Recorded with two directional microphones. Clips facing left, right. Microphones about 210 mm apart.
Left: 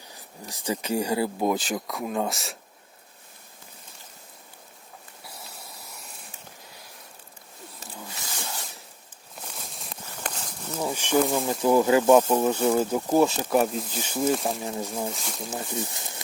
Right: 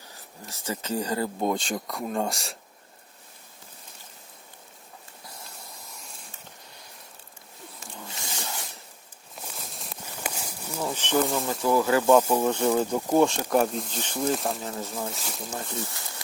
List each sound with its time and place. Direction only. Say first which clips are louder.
0.4 s speech: left 3 dB; 15° left (ahead or behind)
9.3 s walk: even; centre (ahead or behind)
10.8 s speech: left 2 dB; 10° left (ahead or behind)
11.6 s speech: left 3 dB; 20° left (ahead or behind); by 14.6 s centre (ahead or behind)
14.7 s speech: left 3 dB; 20° left (ahead or behind)
15.1 s speech: left 1 dB; centre (ahead or behind)
15.5 s speech: left 3 dB; 15° left (ahead or behind)